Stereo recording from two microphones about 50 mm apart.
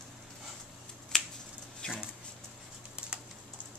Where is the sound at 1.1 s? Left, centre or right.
Centre.